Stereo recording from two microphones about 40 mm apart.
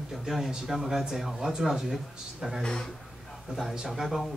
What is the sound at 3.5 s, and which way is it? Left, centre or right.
Speech, centre.